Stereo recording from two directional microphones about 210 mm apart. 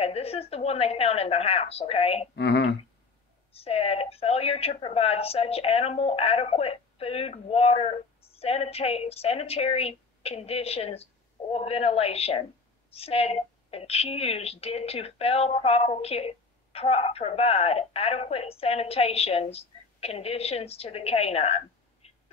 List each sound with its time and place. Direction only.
0.0 s a woman's voice: 30° left (ahead or behind)
2.3 s speech: 55° left (ahead or behind)
3.5 s a woman's voice: 30° left (ahead or behind)